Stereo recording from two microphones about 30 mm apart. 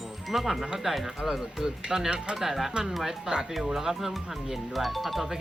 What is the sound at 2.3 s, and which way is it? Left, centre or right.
Speech, centre.